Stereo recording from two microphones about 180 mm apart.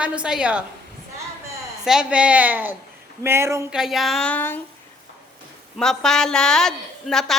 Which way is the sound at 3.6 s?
5° right (ahead or behind).